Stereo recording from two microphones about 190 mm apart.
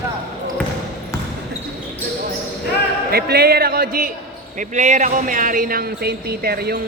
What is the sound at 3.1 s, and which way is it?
Speech, 55° right (ahead or behind).